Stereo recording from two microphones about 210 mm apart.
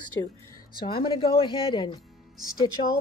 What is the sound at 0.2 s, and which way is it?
Speech, 15° left (ahead or behind).